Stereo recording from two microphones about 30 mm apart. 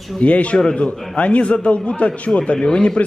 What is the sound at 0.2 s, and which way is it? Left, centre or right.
A man's voice, left.